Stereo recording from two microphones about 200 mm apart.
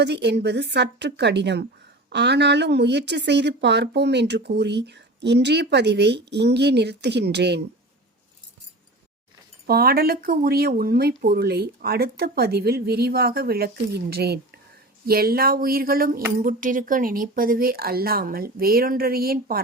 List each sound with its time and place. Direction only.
0.0 s a woman's voice: 60° right (ahead or behind)
9.6 s speech: 50° right (ahead or behind)